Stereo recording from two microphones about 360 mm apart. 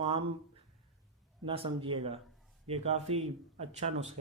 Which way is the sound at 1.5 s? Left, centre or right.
Centre.